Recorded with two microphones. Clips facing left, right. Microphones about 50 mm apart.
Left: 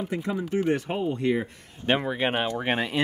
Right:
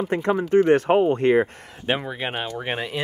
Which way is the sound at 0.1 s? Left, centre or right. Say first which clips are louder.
Right 11 dB; right.